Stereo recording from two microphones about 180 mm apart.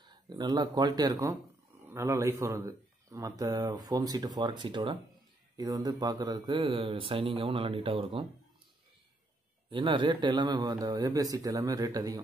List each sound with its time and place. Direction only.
0.0 s speech: 25° right (ahead or behind)
9.7 s speech: 25° right (ahead or behind)